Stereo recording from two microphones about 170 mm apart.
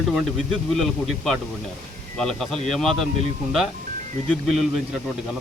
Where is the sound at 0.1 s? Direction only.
Centre (ahead or behind).